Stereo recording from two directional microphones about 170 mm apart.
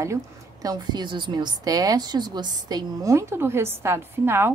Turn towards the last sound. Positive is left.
turn(degrees=-15)  # may be behind; listen again after turning